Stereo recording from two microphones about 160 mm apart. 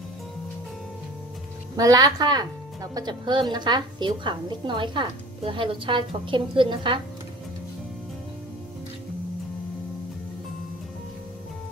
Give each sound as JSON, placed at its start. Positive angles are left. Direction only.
{"t": 1.8, "sound": "a woman's voice", "side_deg": -20}